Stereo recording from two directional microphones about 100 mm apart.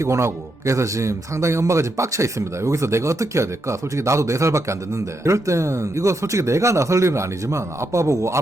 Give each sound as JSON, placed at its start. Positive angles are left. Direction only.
{"t": 0.0, "sound": "speech", "side_deg": -30}